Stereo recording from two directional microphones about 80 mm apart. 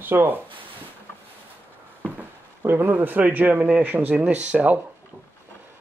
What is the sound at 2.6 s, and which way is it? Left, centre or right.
Speech, right.